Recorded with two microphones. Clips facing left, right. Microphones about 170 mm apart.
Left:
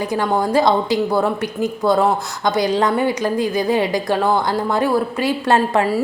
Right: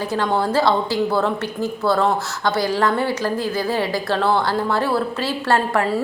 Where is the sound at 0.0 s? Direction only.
10° left (ahead or behind).